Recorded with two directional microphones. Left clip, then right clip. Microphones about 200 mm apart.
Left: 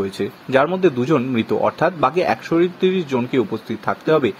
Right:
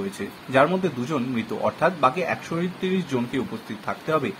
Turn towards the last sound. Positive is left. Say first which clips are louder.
# left 7 dB
turn(degrees=40)  # may be behind; listen again after turning